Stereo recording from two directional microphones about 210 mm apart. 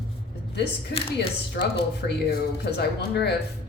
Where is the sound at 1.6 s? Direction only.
50° left (ahead or behind).